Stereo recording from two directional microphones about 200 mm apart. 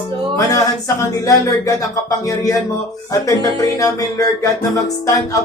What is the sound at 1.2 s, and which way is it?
Music, 15° left (ahead or behind).